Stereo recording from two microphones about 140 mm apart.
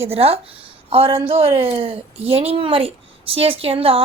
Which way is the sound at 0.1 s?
45° right (ahead or behind).